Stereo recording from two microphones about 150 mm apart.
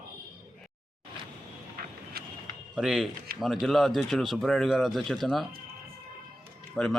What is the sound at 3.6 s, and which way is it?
Speech, centre (ahead or behind).